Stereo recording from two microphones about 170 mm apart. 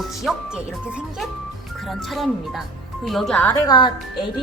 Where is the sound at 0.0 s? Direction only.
Centre (ahead or behind).